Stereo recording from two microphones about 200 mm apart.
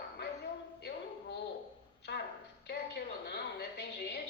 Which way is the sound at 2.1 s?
60° left (ahead or behind).